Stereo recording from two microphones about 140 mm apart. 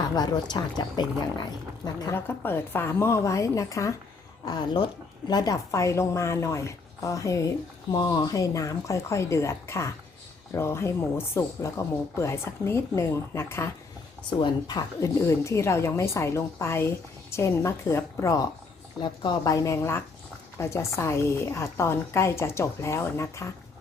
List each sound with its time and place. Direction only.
0.0 s a woman's voice: 30° left (ahead or behind)
2.1 s a woman's voice: 15° left (ahead or behind)
14.3 s a woman's voice: 30° left (ahead or behind)